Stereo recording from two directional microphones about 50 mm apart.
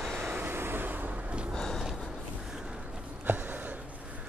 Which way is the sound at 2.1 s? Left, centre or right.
Centre.